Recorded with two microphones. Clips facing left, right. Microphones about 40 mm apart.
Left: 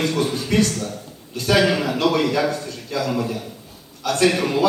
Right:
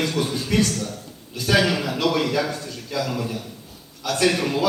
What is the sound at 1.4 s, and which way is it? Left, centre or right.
Speech, centre.